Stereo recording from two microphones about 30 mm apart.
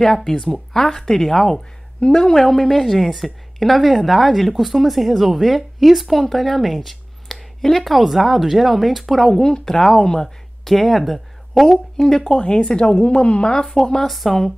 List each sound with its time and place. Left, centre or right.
0.3 s speech: centre
0.9 s a woman's voice: centre
9.3 s a woman's voice: centre
10.6 s speech: centre
12.3 s a woman's voice: left
13.7 s speech: centre
14.0 s a woman's voice: centre